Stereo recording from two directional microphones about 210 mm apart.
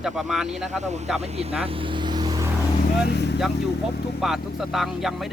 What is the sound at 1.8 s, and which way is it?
Vehicle, 25° right (ahead or behind).